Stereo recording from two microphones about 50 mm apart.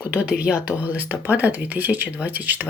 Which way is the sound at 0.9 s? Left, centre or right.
Right.